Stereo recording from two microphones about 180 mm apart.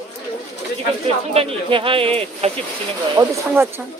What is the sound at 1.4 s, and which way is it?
Speech, 30° right (ahead or behind).